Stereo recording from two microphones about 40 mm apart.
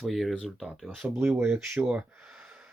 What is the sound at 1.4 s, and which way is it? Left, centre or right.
Speech, right.